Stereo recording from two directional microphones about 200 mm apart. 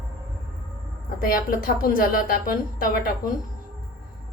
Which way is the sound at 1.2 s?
45° left (ahead or behind).